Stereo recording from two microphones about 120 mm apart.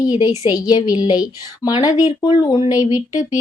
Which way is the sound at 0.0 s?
35° left (ahead or behind).